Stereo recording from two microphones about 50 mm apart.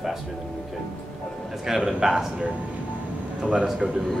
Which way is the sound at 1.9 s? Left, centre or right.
Centre.